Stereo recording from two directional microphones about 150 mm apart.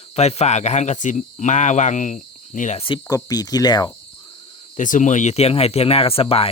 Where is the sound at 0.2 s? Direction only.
45° left (ahead or behind).